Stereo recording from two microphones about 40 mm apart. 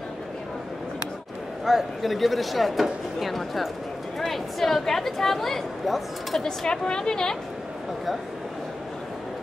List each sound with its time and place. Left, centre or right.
1.6 s speech: centre
6.4 s a woman's voice: centre